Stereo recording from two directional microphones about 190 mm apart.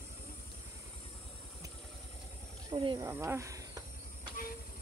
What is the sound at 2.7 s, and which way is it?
Speech, 25° right (ahead or behind).